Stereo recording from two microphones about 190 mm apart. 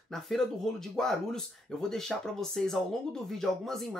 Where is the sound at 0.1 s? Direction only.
Centre (ahead or behind).